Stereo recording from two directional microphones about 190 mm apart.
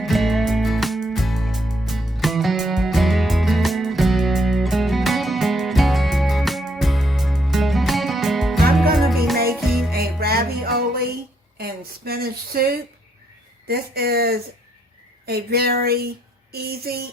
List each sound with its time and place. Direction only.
0.0 s music: centre (ahead or behind)
10.2 s music: 55° right (ahead or behind)
11.5 s a sound: 55° right (ahead or behind)
13.7 s speech: 55° right (ahead or behind)